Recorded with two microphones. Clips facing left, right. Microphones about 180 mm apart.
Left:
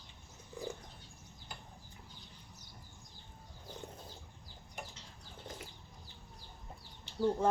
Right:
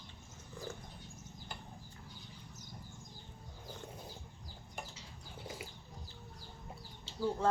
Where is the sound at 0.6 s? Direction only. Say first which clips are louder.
Left 3 dB; 15° left (ahead or behind).